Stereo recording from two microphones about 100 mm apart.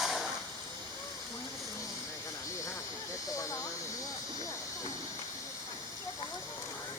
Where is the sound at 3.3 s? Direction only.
35° left (ahead or behind).